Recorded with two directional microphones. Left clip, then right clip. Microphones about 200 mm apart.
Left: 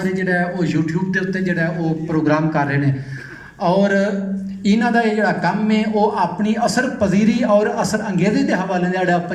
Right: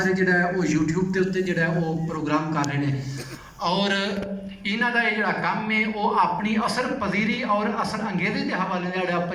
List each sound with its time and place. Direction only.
0.3 s a man's voice: 30° left (ahead or behind); by 9.1 s 55° left (ahead or behind)